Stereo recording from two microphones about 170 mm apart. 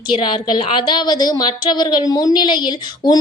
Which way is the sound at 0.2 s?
25° left (ahead or behind).